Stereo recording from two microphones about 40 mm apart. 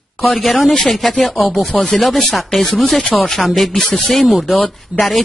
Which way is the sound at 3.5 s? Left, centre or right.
Centre.